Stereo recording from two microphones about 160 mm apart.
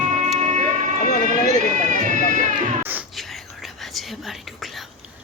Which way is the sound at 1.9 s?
55° right (ahead or behind).